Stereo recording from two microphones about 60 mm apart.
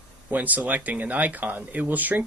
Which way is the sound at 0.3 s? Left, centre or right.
Right.